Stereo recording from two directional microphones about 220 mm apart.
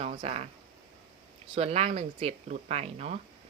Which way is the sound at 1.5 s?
30° right (ahead or behind).